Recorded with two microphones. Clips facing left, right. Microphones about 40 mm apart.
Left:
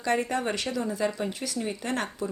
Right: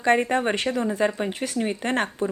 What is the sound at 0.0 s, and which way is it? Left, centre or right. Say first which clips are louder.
Speech: right 6 dB; right.